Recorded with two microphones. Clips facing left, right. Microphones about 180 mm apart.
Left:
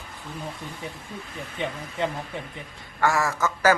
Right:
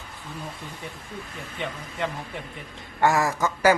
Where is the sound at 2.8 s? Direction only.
20° right (ahead or behind).